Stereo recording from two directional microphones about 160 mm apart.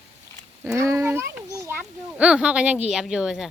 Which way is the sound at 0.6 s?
15° right (ahead or behind).